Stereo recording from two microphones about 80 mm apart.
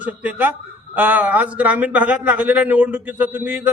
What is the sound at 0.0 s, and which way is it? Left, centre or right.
A man's voice, centre.